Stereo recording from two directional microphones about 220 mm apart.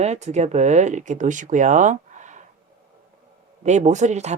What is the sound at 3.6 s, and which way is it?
Speech, 30° right (ahead or behind).